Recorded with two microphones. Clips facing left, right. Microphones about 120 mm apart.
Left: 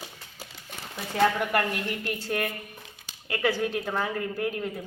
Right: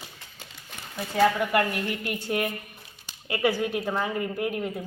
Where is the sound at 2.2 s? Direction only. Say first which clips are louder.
Right 3 dB; 25° right (ahead or behind).